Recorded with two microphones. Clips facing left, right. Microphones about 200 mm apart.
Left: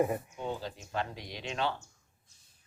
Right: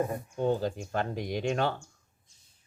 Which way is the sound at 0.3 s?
45° right (ahead or behind).